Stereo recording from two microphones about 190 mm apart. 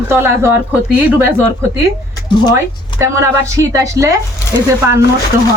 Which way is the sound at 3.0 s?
15° right (ahead or behind).